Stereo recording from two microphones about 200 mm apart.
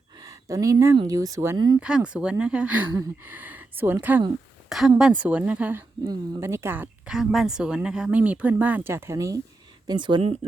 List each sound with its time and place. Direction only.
0.2 s speech: 15° right (ahead or behind)
1.8 s speech: 5° right (ahead or behind); by 10.3 s 25° right (ahead or behind)